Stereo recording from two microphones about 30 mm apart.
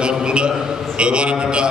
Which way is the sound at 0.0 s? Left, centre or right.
Right.